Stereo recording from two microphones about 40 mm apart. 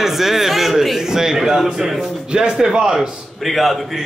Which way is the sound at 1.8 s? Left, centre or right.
Centre.